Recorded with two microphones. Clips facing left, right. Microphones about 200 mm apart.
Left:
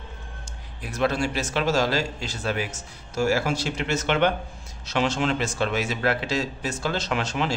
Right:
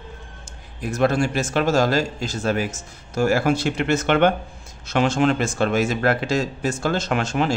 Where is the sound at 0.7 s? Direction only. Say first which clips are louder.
Right 5 dB; 45° right (ahead or behind).